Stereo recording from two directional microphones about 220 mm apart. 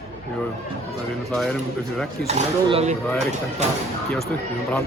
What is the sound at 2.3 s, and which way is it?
Speech, 30° right (ahead or behind).